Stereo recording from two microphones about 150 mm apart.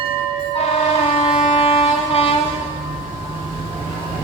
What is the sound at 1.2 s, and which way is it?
Vehicle, 45° left (ahead or behind).